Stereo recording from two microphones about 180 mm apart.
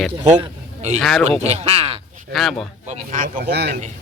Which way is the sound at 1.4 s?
35° right (ahead or behind).